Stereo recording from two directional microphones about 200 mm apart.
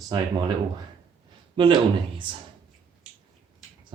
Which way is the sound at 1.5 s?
25° right (ahead or behind).